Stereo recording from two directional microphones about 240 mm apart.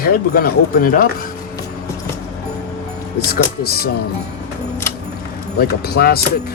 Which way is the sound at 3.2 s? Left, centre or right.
Left.